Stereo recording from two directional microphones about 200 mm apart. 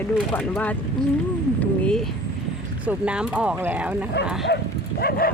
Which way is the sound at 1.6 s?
5° left (ahead or behind).